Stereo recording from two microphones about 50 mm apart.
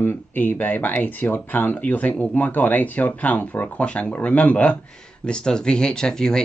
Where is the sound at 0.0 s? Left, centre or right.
Left.